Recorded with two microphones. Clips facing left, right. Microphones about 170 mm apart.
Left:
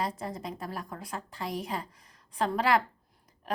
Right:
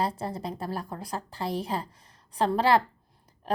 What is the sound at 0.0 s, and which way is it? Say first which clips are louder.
A woman's voice: right 4 dB; 30° right (ahead or behind).